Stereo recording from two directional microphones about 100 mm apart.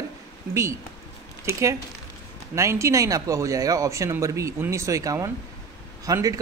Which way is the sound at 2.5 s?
30° right (ahead or behind).